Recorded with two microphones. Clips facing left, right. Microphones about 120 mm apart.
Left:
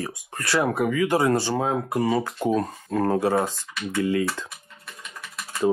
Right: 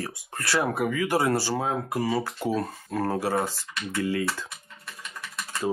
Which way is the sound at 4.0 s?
25° left (ahead or behind).